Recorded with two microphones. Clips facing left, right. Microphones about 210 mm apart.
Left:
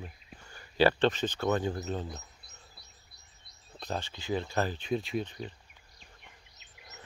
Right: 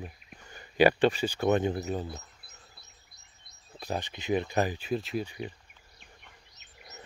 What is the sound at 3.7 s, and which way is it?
Speech, 10° right (ahead or behind).